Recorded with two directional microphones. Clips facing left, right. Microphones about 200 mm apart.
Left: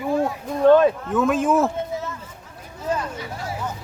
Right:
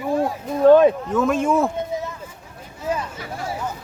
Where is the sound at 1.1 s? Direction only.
Centre (ahead or behind).